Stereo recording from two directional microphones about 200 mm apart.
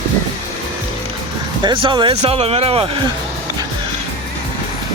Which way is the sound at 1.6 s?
25° right (ahead or behind).